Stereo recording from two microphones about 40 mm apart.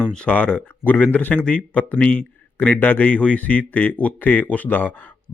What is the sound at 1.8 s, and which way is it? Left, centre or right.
A man's voice, left.